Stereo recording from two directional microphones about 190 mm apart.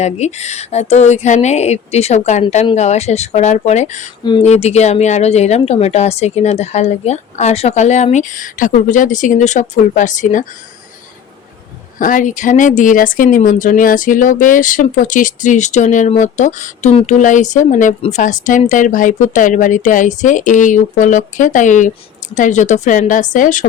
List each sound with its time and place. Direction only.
0.0 s speech: 35° left (ahead or behind)
4.2 s speech: 25° left (ahead or behind)
4.4 s speech: 35° left (ahead or behind)
11.9 s speech: 45° left (ahead or behind)